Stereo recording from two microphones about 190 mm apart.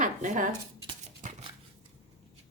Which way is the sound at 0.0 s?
40° right (ahead or behind).